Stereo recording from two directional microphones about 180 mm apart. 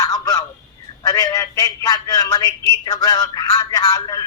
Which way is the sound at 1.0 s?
20° left (ahead or behind).